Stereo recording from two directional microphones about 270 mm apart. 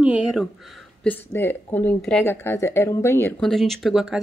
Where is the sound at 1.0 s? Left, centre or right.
Centre.